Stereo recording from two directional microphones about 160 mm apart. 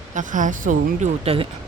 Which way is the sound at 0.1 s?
55° right (ahead or behind).